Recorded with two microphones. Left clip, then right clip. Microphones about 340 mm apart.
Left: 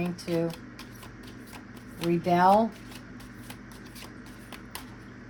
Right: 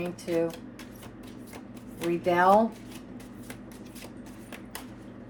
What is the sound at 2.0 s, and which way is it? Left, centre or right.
Speech, left.